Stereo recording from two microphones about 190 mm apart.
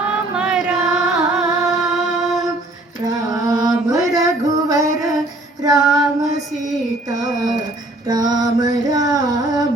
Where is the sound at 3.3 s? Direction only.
20° right (ahead or behind).